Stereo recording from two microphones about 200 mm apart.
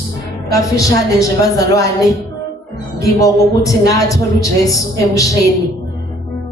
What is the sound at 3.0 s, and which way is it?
A man's voice, 15° left (ahead or behind).